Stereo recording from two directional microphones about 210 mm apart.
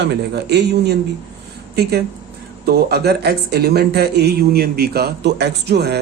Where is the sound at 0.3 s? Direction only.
50° right (ahead or behind).